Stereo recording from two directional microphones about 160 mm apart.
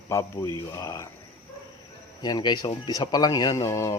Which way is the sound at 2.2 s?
25° left (ahead or behind).